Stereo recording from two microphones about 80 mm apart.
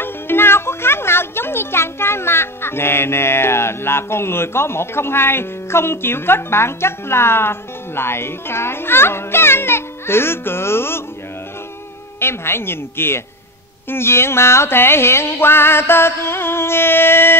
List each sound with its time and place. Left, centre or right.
0.0 s speech: left
12.2 s speech: left
13.8 s a sound: left